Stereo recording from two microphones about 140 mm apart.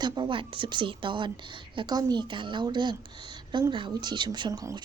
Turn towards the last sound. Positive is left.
turn(degrees=-25)  # may be behind; listen again after turning